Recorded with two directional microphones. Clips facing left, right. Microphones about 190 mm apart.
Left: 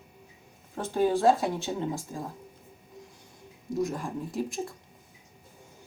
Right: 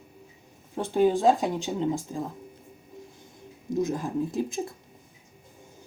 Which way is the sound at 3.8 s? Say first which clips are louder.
Right 4 dB; 20° right (ahead or behind).